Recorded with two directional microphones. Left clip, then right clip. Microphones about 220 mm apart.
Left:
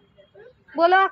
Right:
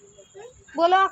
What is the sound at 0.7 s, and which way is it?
Speech, centre (ahead or behind).